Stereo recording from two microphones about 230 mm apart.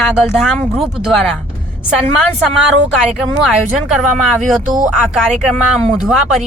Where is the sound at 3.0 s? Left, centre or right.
Centre.